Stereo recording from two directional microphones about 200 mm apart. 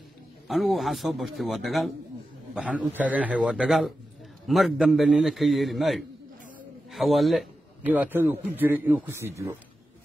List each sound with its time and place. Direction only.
0.5 s a man's voice: centre (ahead or behind)